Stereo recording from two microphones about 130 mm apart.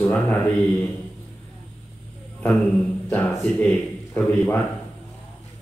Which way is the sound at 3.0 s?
10° left (ahead or behind).